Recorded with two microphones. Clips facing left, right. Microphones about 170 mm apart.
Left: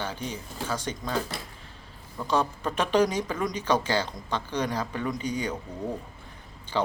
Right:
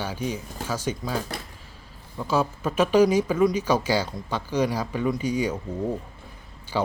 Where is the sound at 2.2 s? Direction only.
5° right (ahead or behind).